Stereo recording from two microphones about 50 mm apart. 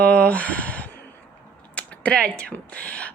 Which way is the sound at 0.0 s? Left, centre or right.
Left.